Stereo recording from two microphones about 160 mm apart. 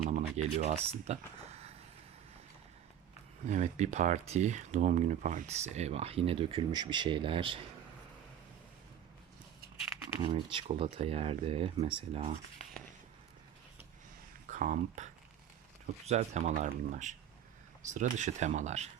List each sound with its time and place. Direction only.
0.1 s a sound: 45° right (ahead or behind)
3.4 s speech: 50° right (ahead or behind); by 7.6 s 35° right (ahead or behind)
10.2 s speech: 30° right (ahead or behind)
14.4 s speech: 50° right (ahead or behind)